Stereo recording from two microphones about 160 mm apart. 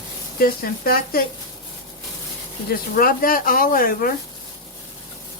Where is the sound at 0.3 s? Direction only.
65° left (ahead or behind).